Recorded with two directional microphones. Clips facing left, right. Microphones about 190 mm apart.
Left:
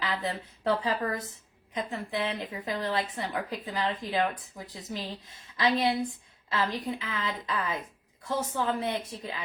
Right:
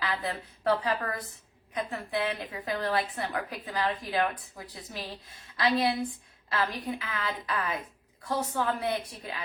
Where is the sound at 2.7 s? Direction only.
20° left (ahead or behind).